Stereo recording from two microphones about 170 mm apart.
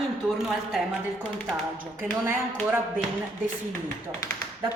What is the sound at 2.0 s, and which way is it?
Speech, 10° right (ahead or behind).